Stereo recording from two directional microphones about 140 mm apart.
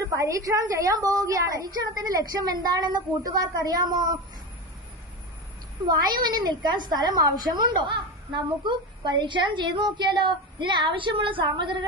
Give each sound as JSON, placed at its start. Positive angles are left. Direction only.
{"t": 0.1, "sound": "a woman's voice", "side_deg": -20}
{"t": 5.9, "sound": "a woman's voice", "side_deg": -30}